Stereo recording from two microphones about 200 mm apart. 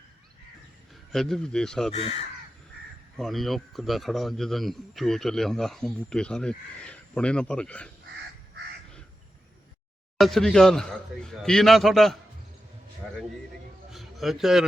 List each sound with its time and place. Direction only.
1.1 s a man's voice: centre (ahead or behind)
1.9 s speech: 30° left (ahead or behind)
3.2 s a man's voice: centre (ahead or behind)
10.2 s a man's voice: centre (ahead or behind)
13.9 s a sound: centre (ahead or behind)